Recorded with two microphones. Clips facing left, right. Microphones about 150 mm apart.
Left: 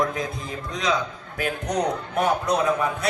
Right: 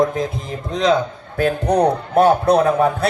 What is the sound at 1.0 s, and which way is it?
Speech, 45° right (ahead or behind).